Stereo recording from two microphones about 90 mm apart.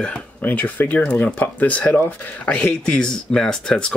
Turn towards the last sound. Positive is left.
turn(degrees=5)  # may be behind; listen again after turning